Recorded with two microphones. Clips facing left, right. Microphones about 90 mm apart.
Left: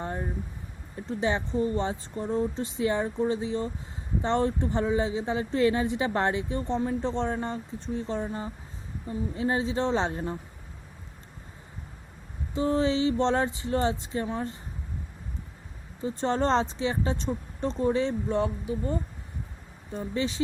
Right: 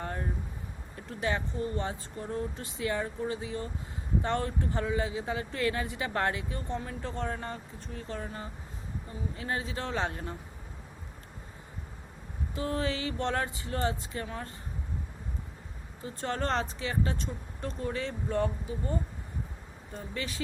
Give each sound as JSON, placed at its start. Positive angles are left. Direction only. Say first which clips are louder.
{"t": 0.0, "sound": "vehicle", "louder": "left 3 dB", "side_deg": 25}
{"t": 0.9, "sound": "speech", "louder": "left 5 dB", "side_deg": 20}
{"t": 12.5, "sound": "speech", "louder": "left 7 dB", "side_deg": 25}
{"t": 16.0, "sound": "speech", "louder": "left 7 dB", "side_deg": 25}
{"t": 20.1, "sound": "speech", "louder": "left 8 dB", "side_deg": 25}